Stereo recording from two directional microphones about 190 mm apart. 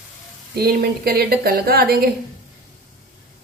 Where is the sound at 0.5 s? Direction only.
55° right (ahead or behind).